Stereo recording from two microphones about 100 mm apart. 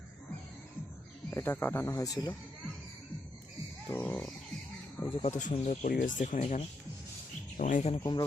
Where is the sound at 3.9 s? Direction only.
20° left (ahead or behind).